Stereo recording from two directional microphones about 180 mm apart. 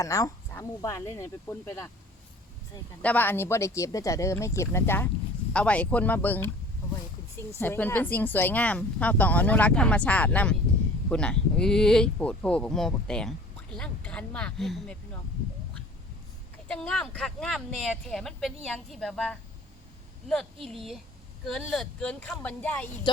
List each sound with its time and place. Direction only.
0.0 s speech: 20° left (ahead or behind)
3.0 s speech: 10° left (ahead or behind)
16.6 s speech: 5° left (ahead or behind)